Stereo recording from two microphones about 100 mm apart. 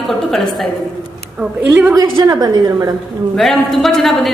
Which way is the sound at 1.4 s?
15° right (ahead or behind).